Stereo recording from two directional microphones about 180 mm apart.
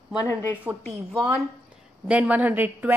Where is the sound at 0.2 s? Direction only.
15° left (ahead or behind).